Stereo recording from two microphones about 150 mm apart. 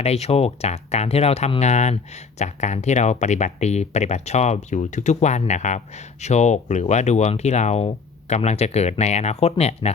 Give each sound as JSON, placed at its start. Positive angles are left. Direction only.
{"t": 0.0, "sound": "speech", "side_deg": 45}